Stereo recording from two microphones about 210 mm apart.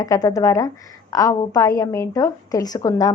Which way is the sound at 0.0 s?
15° left (ahead or behind).